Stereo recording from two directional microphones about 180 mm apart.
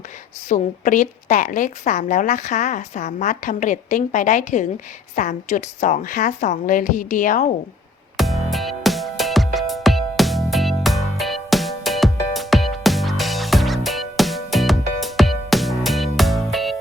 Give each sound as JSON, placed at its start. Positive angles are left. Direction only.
{"t": 0.4, "sound": "a woman's voice", "side_deg": 45}
{"t": 8.1, "sound": "music", "side_deg": 0}